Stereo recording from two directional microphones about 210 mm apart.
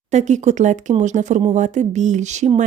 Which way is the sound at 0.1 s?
35° right (ahead or behind).